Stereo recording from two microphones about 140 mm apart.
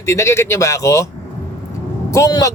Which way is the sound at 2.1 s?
25° left (ahead or behind).